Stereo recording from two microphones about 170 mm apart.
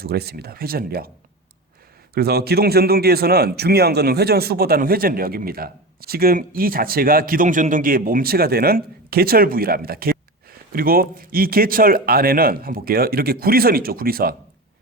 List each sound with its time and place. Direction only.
0.0 s a man's voice: 65° right (ahead or behind)
2.1 s a man's voice: 70° right (ahead or behind)